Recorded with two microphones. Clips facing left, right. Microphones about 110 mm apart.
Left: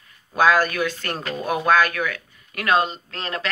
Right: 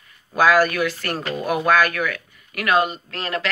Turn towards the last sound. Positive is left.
turn(degrees=25)  # may be behind; listen again after turning